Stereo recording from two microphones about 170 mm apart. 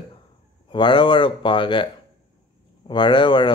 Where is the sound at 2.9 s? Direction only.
30° left (ahead or behind).